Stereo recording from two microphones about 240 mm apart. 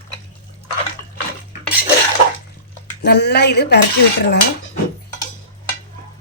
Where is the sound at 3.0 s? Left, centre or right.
Left.